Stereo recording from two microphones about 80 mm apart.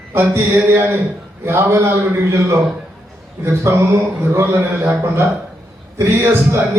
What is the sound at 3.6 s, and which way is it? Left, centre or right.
A man's voice, right.